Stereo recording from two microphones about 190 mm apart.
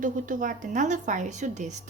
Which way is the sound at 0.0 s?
45° right (ahead or behind).